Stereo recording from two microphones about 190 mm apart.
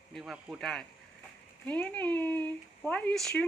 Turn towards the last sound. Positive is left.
turn(degrees=5)  # may be behind; listen again after turning